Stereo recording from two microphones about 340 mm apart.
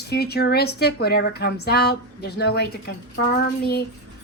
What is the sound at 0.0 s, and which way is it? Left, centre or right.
Speech, left.